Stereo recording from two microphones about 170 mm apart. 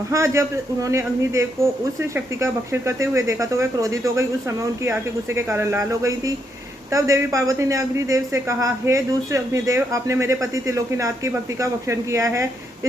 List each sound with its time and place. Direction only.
0.1 s speech: 15° right (ahead or behind)